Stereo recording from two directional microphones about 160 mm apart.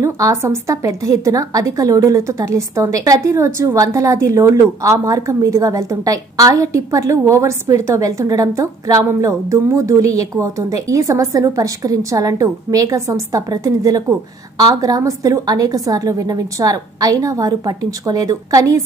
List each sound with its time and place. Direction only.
0.0 s a woman's voice: 20° right (ahead or behind)